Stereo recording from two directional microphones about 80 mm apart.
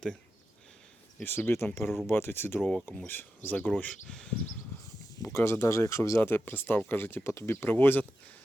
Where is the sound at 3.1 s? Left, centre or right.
Left.